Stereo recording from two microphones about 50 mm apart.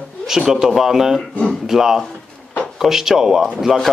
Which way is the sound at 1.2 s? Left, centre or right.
Centre.